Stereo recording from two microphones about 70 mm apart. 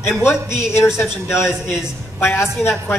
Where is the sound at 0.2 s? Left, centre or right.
Left.